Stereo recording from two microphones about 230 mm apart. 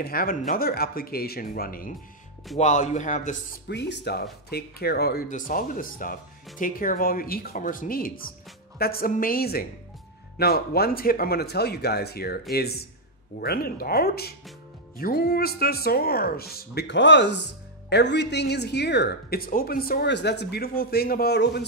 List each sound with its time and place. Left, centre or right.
0.0 s speech: left
3.6 s speech: left